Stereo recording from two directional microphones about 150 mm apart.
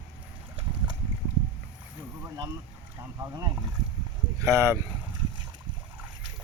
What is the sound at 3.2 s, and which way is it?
Speech, 25° right (ahead or behind).